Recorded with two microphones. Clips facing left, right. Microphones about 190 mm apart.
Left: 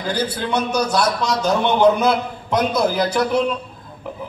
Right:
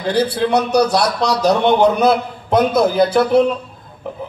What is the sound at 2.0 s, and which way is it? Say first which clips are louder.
A man's voice: right 4 dB; 25° right (ahead or behind).